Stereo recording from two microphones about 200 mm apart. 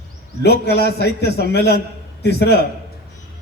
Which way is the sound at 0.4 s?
55° left (ahead or behind).